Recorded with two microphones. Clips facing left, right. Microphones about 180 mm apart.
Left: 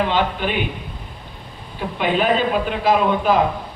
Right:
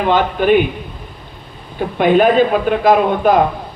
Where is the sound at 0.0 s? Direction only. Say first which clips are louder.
Right 5 dB; 50° right (ahead or behind).